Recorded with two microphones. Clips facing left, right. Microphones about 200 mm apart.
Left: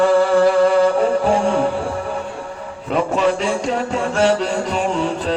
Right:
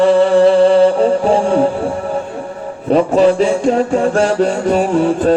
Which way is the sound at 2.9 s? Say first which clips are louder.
Right 7 dB; 35° right (ahead or behind).